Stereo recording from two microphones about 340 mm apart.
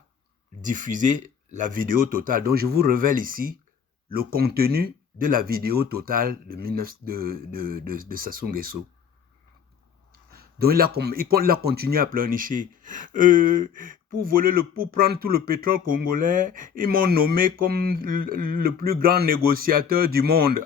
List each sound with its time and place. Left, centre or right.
0.6 s speech: right
10.1 s speech: right